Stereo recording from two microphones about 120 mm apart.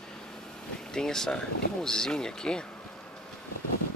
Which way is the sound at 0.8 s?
5° left (ahead or behind).